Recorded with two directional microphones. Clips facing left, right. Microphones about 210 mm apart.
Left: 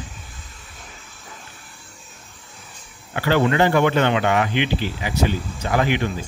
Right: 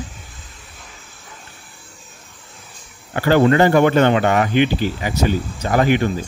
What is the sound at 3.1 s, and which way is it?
Speech, 45° right (ahead or behind).